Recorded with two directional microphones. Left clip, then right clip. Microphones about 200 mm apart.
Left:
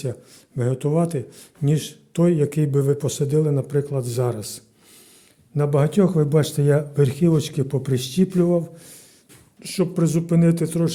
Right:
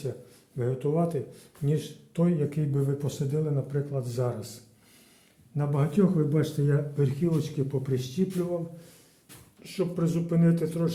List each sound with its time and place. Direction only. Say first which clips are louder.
0.5 s speech: left 6 dB; 50° left (ahead or behind)
5.5 s speech: left 8 dB; 60° left (ahead or behind)